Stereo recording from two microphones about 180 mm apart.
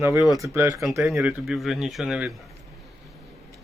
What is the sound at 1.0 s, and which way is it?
Speech, centre (ahead or behind).